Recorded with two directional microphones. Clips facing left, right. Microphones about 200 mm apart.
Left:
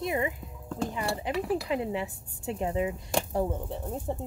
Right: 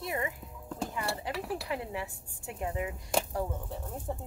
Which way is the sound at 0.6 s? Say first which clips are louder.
Left 5 dB; 10° right (ahead or behind).